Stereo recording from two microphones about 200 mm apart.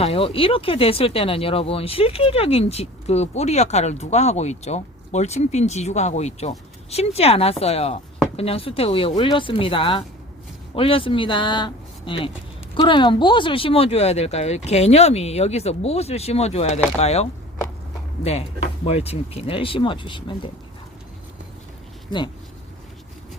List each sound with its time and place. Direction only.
0.0 s speech: 30° left (ahead or behind)